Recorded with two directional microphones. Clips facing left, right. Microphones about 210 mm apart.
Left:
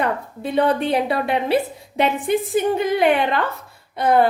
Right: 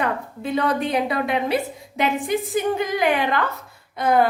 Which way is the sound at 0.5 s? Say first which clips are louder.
Left 3 dB; 30° left (ahead or behind).